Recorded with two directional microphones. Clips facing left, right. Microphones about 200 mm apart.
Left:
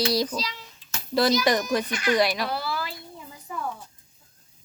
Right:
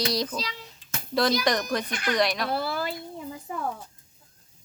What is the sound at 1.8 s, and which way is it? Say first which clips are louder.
Speech: left 3 dB; 55° right (ahead or behind).